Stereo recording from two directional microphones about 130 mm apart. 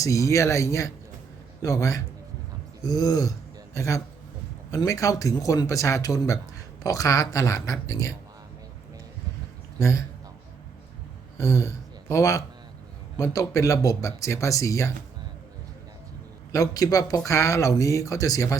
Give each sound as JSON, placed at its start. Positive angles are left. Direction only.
{"t": 0.3, "sound": "speech", "side_deg": 25}
{"t": 9.8, "sound": "speech", "side_deg": 25}
{"t": 11.3, "sound": "speech", "side_deg": 25}
{"t": 16.5, "sound": "speech", "side_deg": 25}